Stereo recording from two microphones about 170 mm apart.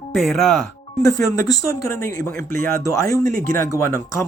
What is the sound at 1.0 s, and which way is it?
Speech, 20° left (ahead or behind).